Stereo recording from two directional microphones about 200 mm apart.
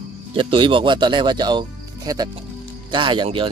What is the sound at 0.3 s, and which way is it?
Speech, 25° right (ahead or behind).